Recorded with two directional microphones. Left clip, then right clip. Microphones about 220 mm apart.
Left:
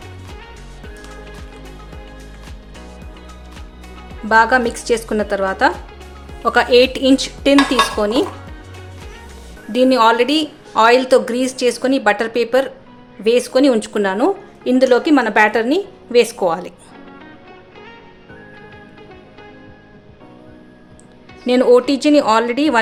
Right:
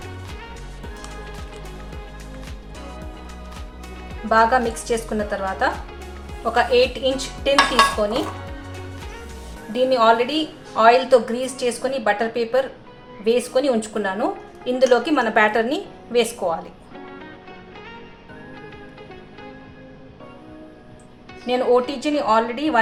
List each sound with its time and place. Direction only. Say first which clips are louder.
0.8 s music: left 1 dB; centre (ahead or behind)
4.3 s a woman's voice: left 4 dB; 45° left (ahead or behind)
8.4 s music: right 2 dB; centre (ahead or behind)
9.7 s a woman's voice: left 4 dB; 45° left (ahead or behind)
21.4 s a woman's voice: left 6 dB; 45° left (ahead or behind)